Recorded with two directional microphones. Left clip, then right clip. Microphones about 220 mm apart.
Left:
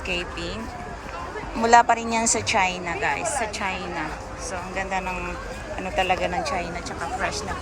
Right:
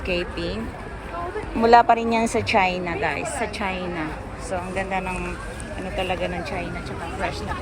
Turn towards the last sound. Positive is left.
turn(degrees=50)  # may be behind; listen again after turning